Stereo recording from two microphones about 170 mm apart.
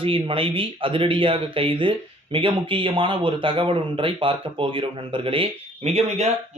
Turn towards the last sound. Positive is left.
turn(degrees=-40)  # may be behind; listen again after turning